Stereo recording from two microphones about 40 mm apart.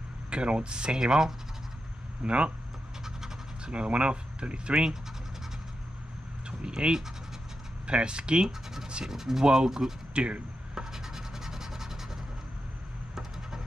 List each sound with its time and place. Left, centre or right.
0.3 s speech: right
2.2 s speech: right
3.7 s speech: right
6.6 s speech: centre
8.5 s speech: centre
10.1 s speech: right
10.7 s rub: centre